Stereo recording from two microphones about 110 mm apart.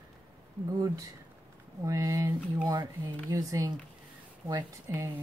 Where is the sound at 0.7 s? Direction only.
35° right (ahead or behind).